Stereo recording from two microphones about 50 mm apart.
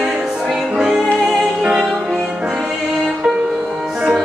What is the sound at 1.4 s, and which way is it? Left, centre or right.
Music, centre.